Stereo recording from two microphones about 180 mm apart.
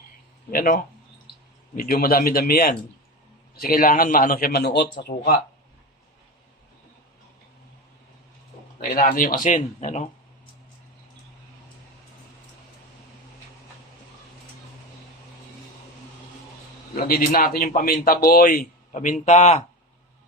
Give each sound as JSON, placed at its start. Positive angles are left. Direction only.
{"t": 0.5, "sound": "a man's voice", "side_deg": 50}
{"t": 9.0, "sound": "a man's voice", "side_deg": 50}
{"t": 17.0, "sound": "a man's voice", "side_deg": 50}